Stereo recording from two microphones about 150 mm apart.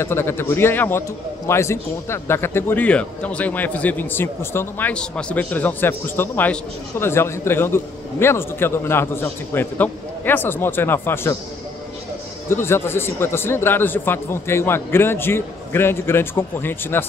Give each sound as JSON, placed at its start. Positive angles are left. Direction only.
{"t": 0.0, "sound": "a man's voice", "side_deg": 15}
{"t": 12.4, "sound": "a man's voice", "side_deg": 15}